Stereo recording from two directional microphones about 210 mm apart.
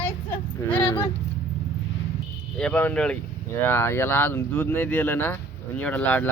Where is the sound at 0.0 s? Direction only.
10° left (ahead or behind).